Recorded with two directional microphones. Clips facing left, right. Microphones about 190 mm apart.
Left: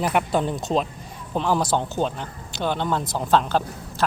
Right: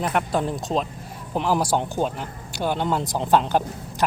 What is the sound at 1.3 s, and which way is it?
Speech, 10° right (ahead or behind).